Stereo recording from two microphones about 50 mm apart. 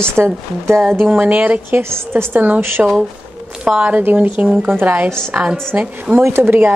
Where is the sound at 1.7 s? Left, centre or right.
Right.